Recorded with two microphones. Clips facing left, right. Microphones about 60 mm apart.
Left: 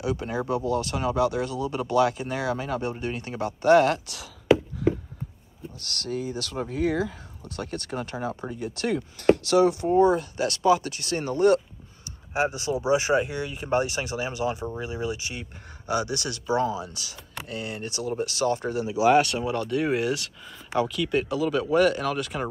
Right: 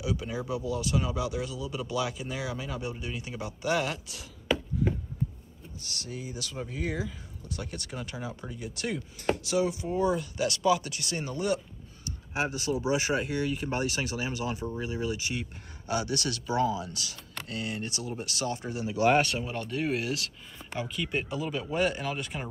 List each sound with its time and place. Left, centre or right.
0.0 s speech: left
4.8 s a sound: left
5.8 s speech: left
9.4 s speech: left
9.8 s speech: left
12.4 s speech: left
19.0 s speech: centre
20.9 s speech: centre